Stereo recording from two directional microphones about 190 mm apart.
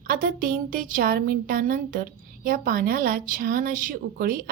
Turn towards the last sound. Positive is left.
turn(degrees=-50)  # may be behind; listen again after turning